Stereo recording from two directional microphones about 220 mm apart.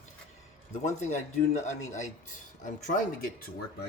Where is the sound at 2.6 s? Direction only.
35° left (ahead or behind).